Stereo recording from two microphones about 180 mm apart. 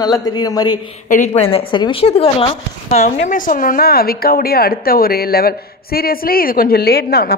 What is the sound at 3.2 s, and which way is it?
Speech, 50° left (ahead or behind).